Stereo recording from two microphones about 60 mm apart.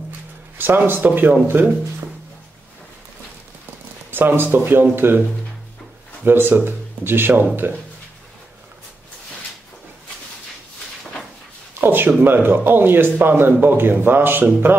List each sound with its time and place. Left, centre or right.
0.6 s speech: right
4.1 s speech: right
6.2 s speech: right
11.8 s speech: right